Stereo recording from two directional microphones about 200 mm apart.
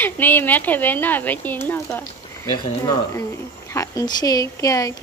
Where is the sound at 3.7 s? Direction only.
15° left (ahead or behind).